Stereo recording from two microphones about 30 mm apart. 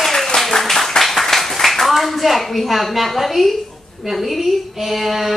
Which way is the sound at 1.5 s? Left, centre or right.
Centre.